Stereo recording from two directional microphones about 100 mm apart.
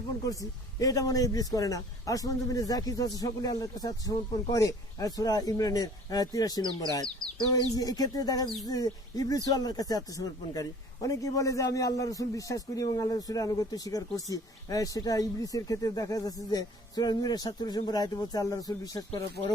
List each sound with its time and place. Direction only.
0.3 s a man's voice: 35° left (ahead or behind)